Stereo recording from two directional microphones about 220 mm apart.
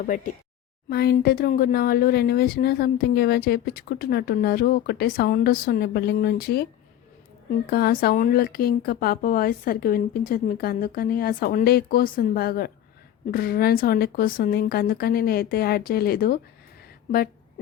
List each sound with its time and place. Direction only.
0.9 s speech: 45° left (ahead or behind)
7.7 s speech: 45° left (ahead or behind)